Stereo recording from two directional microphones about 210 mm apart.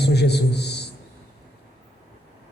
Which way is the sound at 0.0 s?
50° left (ahead or behind).